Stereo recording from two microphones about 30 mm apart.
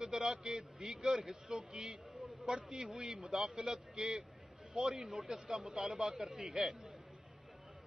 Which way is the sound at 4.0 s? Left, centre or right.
Right.